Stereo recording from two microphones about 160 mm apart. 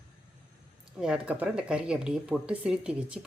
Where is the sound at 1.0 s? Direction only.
5° right (ahead or behind).